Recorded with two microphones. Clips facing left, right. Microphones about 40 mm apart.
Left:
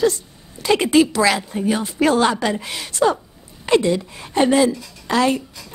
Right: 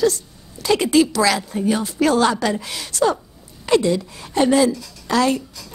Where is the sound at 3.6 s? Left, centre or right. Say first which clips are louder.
Even; left.